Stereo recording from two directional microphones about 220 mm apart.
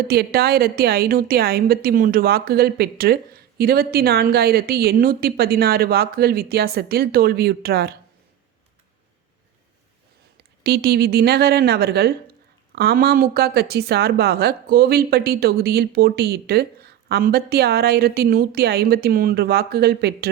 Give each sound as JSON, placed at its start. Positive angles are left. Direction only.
{"t": 0.1, "sound": "a woman's voice", "side_deg": -45}
{"t": 10.3, "sound": "a woman's voice", "side_deg": -45}